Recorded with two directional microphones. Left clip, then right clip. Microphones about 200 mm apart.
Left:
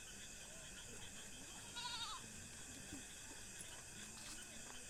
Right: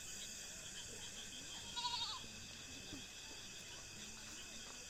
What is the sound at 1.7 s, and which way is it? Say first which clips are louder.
Goat: right 5 dB; 25° right (ahead or behind).